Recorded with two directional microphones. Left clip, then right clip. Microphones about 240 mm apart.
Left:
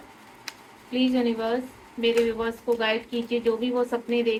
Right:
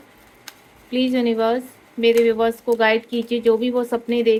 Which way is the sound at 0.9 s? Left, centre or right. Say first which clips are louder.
Right 5 dB; right.